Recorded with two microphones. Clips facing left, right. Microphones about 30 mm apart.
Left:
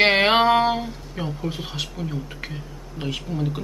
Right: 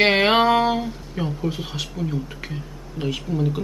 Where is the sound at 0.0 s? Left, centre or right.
Centre.